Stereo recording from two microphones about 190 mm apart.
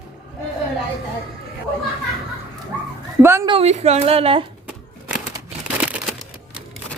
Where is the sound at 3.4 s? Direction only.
30° right (ahead or behind).